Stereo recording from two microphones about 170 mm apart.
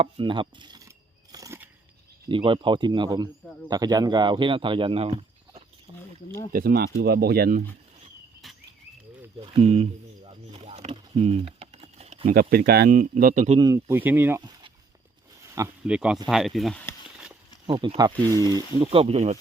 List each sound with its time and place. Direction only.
0.0 s a sound: 30° right (ahead or behind); by 1.7 s 15° right (ahead or behind)
2.3 s speech: 30° right (ahead or behind)
3.4 s speech: 10° left (ahead or behind)
3.7 s speech: 25° right (ahead or behind)
6.1 s speech: 20° left (ahead or behind)
6.5 s speech: 60° right (ahead or behind)
8.4 s a sound: centre (ahead or behind)
9.4 s a sound: 35° right (ahead or behind)
12.2 s speech: 55° right (ahead or behind)
13.6 s speech: 20° right (ahead or behind)
15.8 s speech: 5° right (ahead or behind)
17.7 s speech: 30° right (ahead or behind)